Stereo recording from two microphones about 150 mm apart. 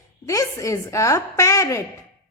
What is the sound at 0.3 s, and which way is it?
Speech, 20° left (ahead or behind).